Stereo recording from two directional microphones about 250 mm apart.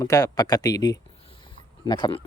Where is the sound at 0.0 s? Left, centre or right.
Centre.